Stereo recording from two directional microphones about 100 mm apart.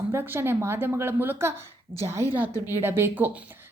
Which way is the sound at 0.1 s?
25° right (ahead or behind).